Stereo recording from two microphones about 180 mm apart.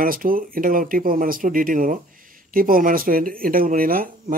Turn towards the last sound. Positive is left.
turn(degrees=-50)  # may be behind; listen again after turning